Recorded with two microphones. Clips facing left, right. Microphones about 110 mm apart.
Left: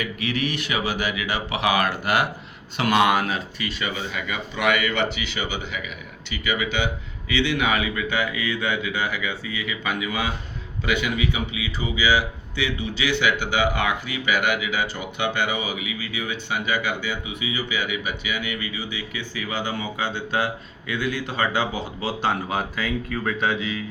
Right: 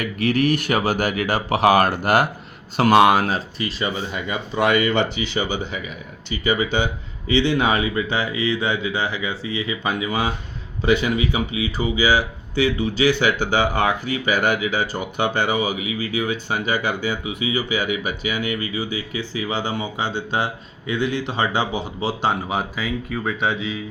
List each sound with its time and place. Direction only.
0.0 s speech: 45° right (ahead or behind); by 22.3 s 20° right (ahead or behind)
22.4 s speech: 10° right (ahead or behind)
23.4 s speech: 25° right (ahead or behind)